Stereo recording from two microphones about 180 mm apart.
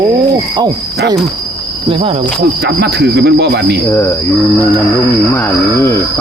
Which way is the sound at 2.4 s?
65° right (ahead or behind).